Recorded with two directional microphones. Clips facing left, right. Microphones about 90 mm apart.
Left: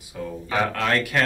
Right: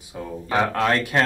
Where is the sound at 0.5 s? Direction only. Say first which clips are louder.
Right 2 dB; 30° right (ahead or behind).